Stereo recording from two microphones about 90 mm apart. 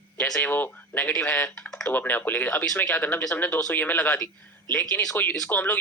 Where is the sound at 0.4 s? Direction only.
20° left (ahead or behind).